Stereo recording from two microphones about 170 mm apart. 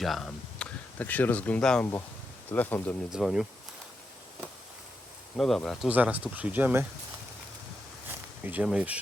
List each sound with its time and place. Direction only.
0.0 s speech: centre (ahead or behind)
3.1 s speech: centre (ahead or behind)
5.4 s speech: centre (ahead or behind)
5.9 s speech: 10° right (ahead or behind)
8.4 s speech: 5° right (ahead or behind)